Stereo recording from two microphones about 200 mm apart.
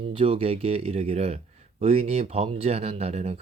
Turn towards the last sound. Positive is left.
turn(degrees=-35)  # may be behind; listen again after turning